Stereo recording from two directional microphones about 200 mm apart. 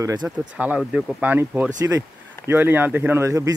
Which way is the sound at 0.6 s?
5° right (ahead or behind).